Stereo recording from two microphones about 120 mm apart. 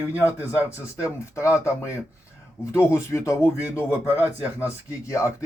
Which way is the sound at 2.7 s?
25° left (ahead or behind).